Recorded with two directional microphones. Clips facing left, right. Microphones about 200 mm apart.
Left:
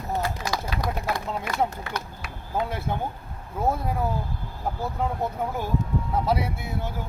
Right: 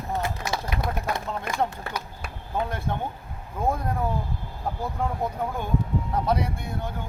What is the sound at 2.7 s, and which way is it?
Speech, 5° left (ahead or behind).